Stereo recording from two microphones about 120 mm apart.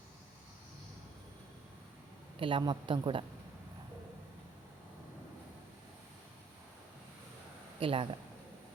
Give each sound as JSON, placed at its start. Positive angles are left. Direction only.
{"t": 2.4, "sound": "a woman's voice", "side_deg": -45}
{"t": 7.8, "sound": "speech", "side_deg": -50}